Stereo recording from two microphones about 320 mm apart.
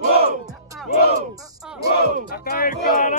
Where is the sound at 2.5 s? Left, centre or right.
Left.